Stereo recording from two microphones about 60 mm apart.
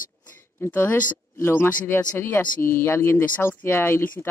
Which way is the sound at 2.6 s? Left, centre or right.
Left.